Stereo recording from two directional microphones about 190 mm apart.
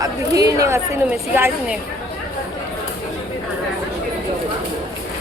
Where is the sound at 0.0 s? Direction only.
20° right (ahead or behind).